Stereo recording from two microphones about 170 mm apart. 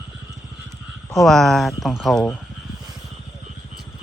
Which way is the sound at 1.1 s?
Centre (ahead or behind).